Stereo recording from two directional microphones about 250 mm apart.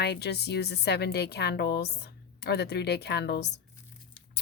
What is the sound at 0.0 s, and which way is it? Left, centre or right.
A woman's voice, left.